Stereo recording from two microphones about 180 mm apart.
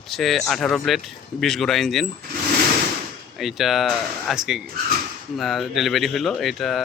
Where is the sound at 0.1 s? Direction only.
Centre (ahead or behind).